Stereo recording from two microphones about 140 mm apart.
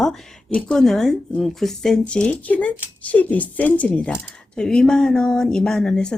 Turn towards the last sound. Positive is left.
turn(degrees=5)  # may be behind; listen again after turning